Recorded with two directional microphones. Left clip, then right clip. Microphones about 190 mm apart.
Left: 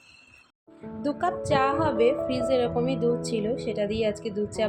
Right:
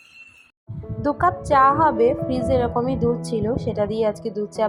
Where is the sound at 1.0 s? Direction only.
25° right (ahead or behind).